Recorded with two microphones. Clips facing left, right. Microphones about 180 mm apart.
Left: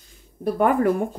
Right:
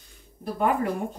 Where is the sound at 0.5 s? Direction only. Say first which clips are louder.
Left 5 dB; 55° left (ahead or behind).